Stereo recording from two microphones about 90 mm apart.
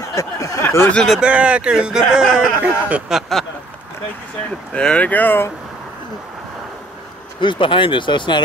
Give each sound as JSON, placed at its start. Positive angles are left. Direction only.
{"t": 0.1, "sound": "a sound", "side_deg": 35}
{"t": 1.2, "sound": "speech", "side_deg": -15}
{"t": 4.7, "sound": "speech", "side_deg": 15}
{"t": 7.3, "sound": "speech", "side_deg": 65}